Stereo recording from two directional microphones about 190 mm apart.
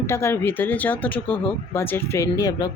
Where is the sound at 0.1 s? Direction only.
10° left (ahead or behind).